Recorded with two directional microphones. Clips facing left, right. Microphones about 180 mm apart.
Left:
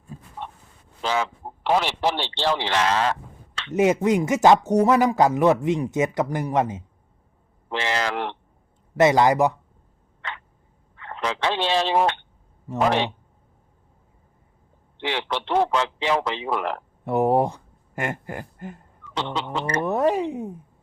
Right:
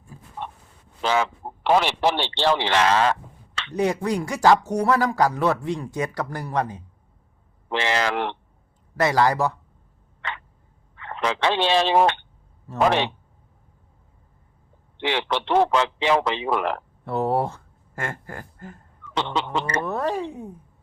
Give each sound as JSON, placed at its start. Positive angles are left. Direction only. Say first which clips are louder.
{"t": 0.1, "sound": "a sound", "louder": "left 5 dB", "side_deg": 25}
{"t": 1.0, "sound": "speech", "louder": "right 2 dB", "side_deg": -70}
{"t": 3.7, "sound": "speech", "louder": "left 4 dB", "side_deg": 20}
{"t": 7.7, "sound": "speech", "louder": "right 2 dB", "side_deg": -75}
{"t": 9.0, "sound": "speech", "louder": "left 3 dB", "side_deg": 20}
{"t": 10.2, "sound": "a sound", "louder": "right 2 dB", "side_deg": -80}
{"t": 10.9, "sound": "speech", "louder": "right 2 dB", "side_deg": -80}
{"t": 12.7, "sound": "a sound", "louder": "even", "side_deg": 15}
{"t": 14.9, "sound": "speech", "louder": "right 2 dB", "side_deg": -75}
{"t": 17.1, "sound": "speech", "louder": "left 3 dB", "side_deg": 15}
{"t": 19.1, "sound": "speech", "louder": "right 2 dB", "side_deg": -70}
{"t": 19.8, "sound": "a sound", "louder": "left 4 dB", "side_deg": 20}